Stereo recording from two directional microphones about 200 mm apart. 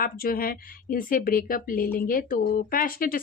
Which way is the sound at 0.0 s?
45° left (ahead or behind).